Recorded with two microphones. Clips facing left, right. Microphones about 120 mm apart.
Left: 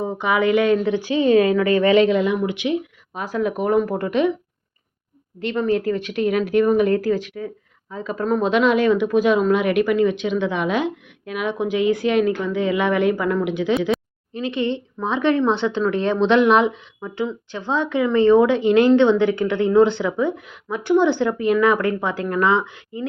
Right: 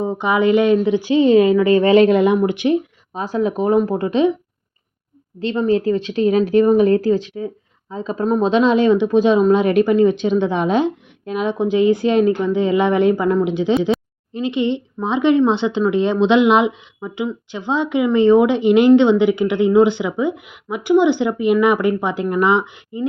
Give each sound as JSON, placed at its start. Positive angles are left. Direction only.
{"t": 0.0, "sound": "speech", "side_deg": -25}
{"t": 2.0, "sound": "speech", "side_deg": -55}
{"t": 3.2, "sound": "speech", "side_deg": -30}
{"t": 5.4, "sound": "a woman's voice", "side_deg": -25}